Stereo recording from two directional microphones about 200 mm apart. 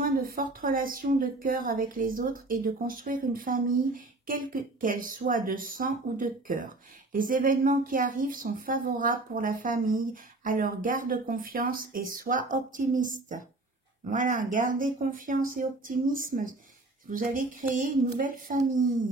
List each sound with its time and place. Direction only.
0.0 s speech: 45° right (ahead or behind)